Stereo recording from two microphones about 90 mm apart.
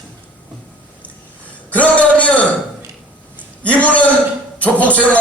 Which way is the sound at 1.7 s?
15° left (ahead or behind).